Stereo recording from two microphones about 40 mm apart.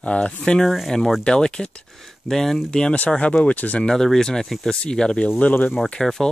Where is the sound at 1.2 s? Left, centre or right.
Left.